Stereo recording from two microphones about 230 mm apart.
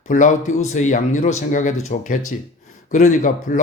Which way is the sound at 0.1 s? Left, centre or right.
Left.